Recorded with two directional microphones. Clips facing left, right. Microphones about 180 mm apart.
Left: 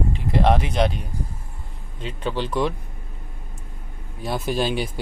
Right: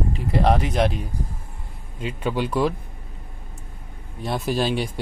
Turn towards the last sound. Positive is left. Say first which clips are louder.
# right 1 dB
turn(degrees=0)  # may be behind; listen again after turning